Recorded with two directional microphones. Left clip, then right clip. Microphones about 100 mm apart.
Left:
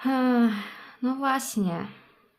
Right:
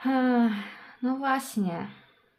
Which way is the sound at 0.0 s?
40° left (ahead or behind).